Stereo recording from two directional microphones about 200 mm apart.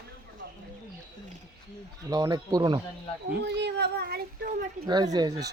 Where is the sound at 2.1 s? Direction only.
20° right (ahead or behind).